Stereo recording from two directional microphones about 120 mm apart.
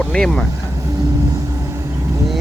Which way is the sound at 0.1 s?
5° left (ahead or behind).